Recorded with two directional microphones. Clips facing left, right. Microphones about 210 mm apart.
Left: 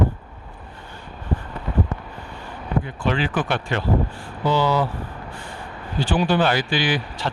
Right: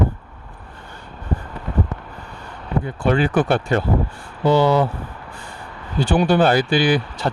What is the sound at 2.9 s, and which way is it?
Speech, 45° right (ahead or behind).